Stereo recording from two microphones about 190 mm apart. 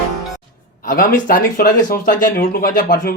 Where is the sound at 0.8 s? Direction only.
50° left (ahead or behind).